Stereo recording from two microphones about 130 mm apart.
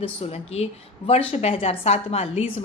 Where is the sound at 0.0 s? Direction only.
50° left (ahead or behind).